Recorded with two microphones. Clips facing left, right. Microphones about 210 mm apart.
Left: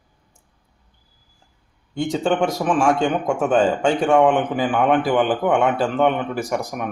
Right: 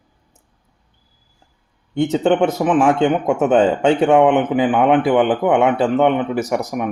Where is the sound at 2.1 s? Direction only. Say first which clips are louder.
Right 4 dB; 20° right (ahead or behind).